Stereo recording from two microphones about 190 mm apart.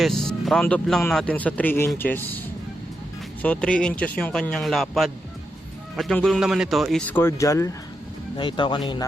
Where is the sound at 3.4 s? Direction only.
5° left (ahead or behind).